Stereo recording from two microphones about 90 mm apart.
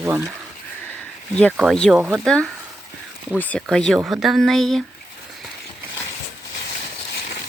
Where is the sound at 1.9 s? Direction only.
5° left (ahead or behind).